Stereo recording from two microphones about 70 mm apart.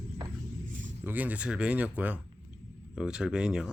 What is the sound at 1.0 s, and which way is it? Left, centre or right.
Speech, right.